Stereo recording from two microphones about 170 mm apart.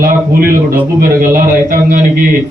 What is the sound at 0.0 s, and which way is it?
A man's voice, 55° right (ahead or behind).